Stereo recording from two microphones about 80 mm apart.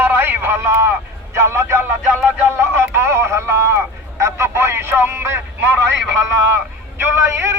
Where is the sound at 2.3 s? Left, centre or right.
Right.